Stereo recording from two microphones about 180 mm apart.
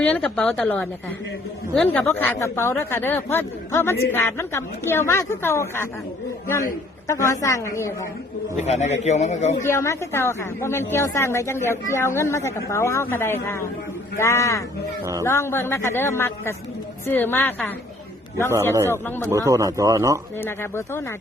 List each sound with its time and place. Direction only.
0.0 s a woman's voice: 5° left (ahead or behind)
7.1 s speech: 15° left (ahead or behind)
8.5 s a man's voice: 40° left (ahead or behind)
9.6 s speech: 15° left (ahead or behind)
18.9 s speech: 10° left (ahead or behind)
19.3 s speech: 20° right (ahead or behind)
20.4 s speech: 15° left (ahead or behind)